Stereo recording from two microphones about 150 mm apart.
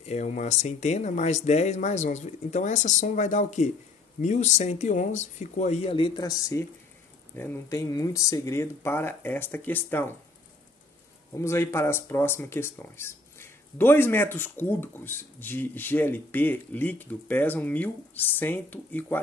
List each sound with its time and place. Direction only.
0.0 s speech: 50° left (ahead or behind); by 10.1 s 15° left (ahead or behind)
11.3 s speech: 20° left (ahead or behind)